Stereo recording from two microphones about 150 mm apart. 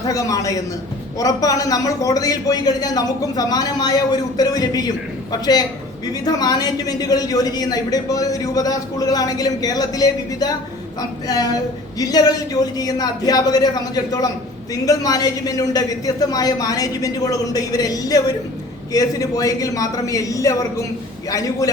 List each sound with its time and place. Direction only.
0.0 s a man's voice: 25° left (ahead or behind)